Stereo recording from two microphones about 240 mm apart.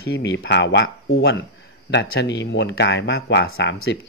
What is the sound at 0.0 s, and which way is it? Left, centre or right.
Speech, left.